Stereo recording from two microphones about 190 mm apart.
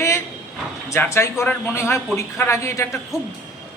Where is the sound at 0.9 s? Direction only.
15° left (ahead or behind).